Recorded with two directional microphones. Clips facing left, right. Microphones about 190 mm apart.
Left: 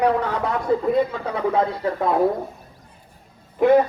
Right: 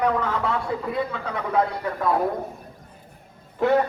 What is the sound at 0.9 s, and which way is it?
A man's voice, 30° left (ahead or behind).